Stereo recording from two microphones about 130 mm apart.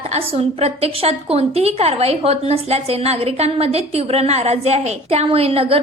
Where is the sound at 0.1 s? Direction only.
55° right (ahead or behind).